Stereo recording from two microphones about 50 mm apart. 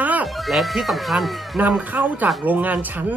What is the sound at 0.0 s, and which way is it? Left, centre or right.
Chicken, right.